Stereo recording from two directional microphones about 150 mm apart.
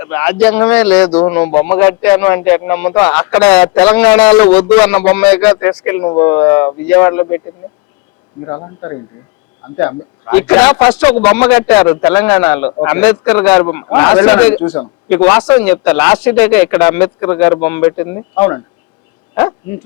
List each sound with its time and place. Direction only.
0.0 s speech: 15° left (ahead or behind)
8.4 s speech: 20° left (ahead or behind)